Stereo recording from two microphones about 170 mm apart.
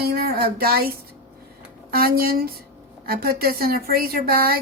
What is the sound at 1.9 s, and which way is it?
Speech, 60° right (ahead or behind).